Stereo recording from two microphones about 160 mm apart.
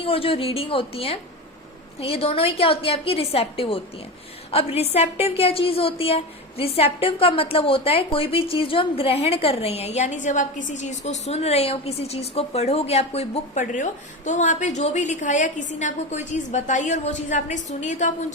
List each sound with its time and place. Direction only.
0.0 s a woman's voice: 35° left (ahead or behind)